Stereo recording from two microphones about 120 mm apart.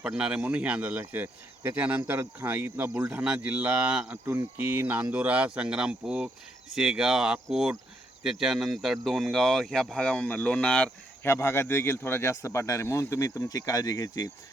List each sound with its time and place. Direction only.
0.0 s speech: 10° right (ahead or behind); by 11.3 s 10° left (ahead or behind)
11.3 s speech: 20° left (ahead or behind)